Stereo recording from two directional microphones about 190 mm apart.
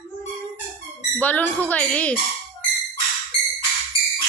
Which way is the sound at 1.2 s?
10° left (ahead or behind).